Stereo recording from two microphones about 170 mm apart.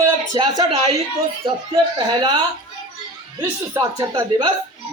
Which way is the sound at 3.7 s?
20° right (ahead or behind).